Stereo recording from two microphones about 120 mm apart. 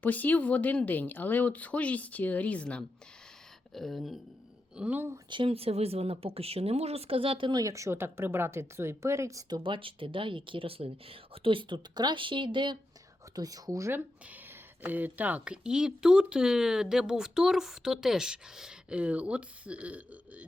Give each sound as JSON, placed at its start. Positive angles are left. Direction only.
{"t": 0.0, "sound": "speech", "side_deg": 15}
{"t": 4.8, "sound": "speech", "side_deg": -15}
{"t": 5.3, "sound": "speech", "side_deg": -50}
{"t": 7.5, "sound": "speech", "side_deg": -25}
{"t": 9.6, "sound": "speech", "side_deg": -45}
{"t": 13.3, "sound": "speech", "side_deg": -30}